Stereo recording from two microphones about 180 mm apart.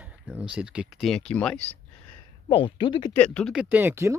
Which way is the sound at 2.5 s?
30° left (ahead or behind).